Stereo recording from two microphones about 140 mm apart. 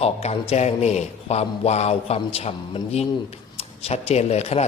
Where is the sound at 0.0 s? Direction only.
50° left (ahead or behind).